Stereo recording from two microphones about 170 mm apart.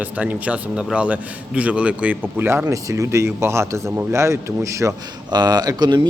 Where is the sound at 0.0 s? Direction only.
10° right (ahead or behind).